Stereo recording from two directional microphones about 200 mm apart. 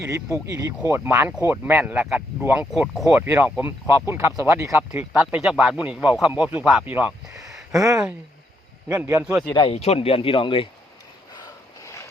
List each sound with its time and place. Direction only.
0.9 s speech: 10° right (ahead or behind)
9.5 s speech: 25° left (ahead or behind)